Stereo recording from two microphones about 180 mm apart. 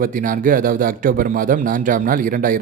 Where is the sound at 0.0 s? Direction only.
50° right (ahead or behind).